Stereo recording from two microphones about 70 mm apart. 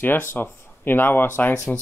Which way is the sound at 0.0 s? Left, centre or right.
Left.